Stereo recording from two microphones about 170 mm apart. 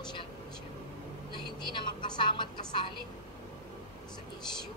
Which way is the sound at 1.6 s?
30° left (ahead or behind).